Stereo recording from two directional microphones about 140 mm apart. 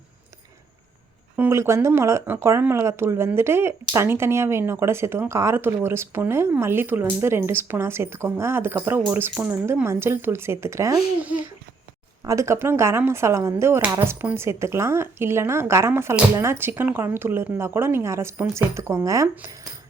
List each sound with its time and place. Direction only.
1.4 s speech: 20° right (ahead or behind)
12.2 s speech: 20° right (ahead or behind)